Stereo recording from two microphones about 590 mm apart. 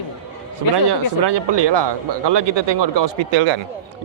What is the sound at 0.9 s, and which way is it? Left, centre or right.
Speech, right.